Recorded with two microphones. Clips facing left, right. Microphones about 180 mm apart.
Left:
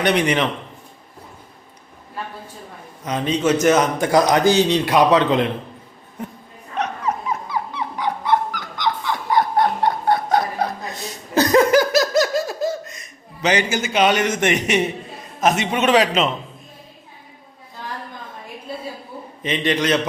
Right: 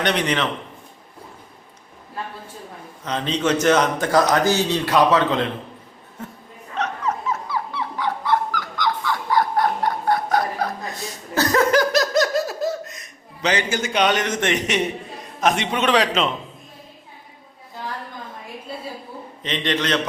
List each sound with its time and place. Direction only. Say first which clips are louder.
0.0 s a man's voice: left 3 dB; 10° left (ahead or behind)
3.0 s a man's voice: left 3 dB; 10° left (ahead or behind)
6.2 s a sound: left 4 dB; 15° left (ahead or behind)
6.7 s dog: left 1 dB; 10° left (ahead or behind)
11.3 s laughter: left 4 dB; 15° left (ahead or behind)
13.5 s a man's voice: left 2 dB; 10° left (ahead or behind)
19.4 s a man's voice: left 3 dB; 10° left (ahead or behind)